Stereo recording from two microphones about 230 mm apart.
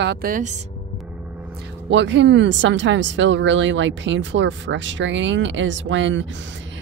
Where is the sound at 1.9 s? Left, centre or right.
Right.